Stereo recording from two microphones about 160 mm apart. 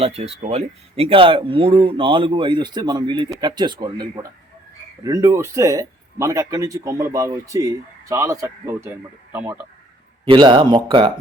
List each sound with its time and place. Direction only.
0.0 s a man's voice: 40° right (ahead or behind); by 8.9 s 15° right (ahead or behind)
10.2 s speech: 30° right (ahead or behind)